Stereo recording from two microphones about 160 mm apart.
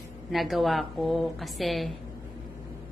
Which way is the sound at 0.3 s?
Centre (ahead or behind).